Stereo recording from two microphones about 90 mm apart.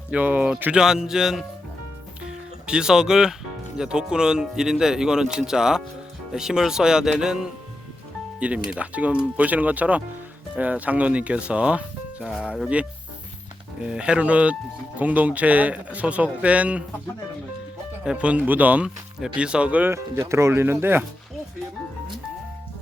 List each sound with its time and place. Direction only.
0.1 s speech: 15° right (ahead or behind)
2.2 s music: 10° right (ahead or behind)
3.8 s speech: 10° right (ahead or behind)
12.3 s speech: 5° right (ahead or behind)
18.0 s speech: 10° right (ahead or behind)
19.9 s speech: 30° right (ahead or behind)